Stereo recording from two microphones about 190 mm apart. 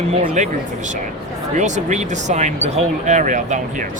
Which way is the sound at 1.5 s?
40° right (ahead or behind).